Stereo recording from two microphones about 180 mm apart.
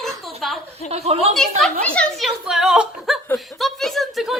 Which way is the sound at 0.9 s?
35° right (ahead or behind).